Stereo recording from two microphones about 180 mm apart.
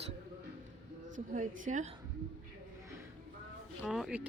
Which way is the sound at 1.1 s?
45° right (ahead or behind).